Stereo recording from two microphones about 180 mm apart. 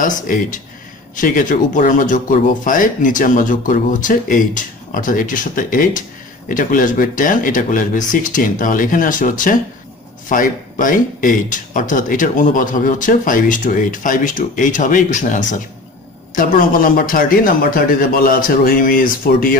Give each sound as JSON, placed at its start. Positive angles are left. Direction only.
{"t": 0.0, "sound": "speech", "side_deg": 45}